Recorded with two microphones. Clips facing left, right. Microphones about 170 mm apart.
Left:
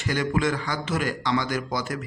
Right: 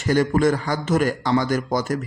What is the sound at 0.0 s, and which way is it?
A man's voice, 45° right (ahead or behind).